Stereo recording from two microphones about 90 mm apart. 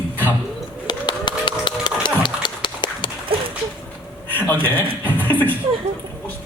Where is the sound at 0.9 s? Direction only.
55° left (ahead or behind).